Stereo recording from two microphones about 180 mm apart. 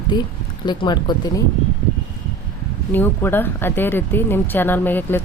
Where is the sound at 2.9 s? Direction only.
10° left (ahead or behind).